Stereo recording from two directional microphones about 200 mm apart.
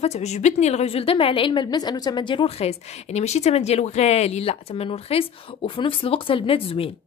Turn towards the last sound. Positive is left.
turn(degrees=25)  # may be behind; listen again after turning